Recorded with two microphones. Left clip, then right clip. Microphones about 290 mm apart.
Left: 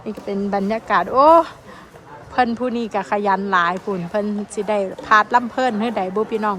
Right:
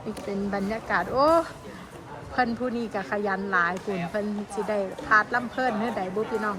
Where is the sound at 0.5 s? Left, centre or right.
Centre.